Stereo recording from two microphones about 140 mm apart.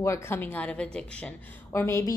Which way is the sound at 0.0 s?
20° left (ahead or behind).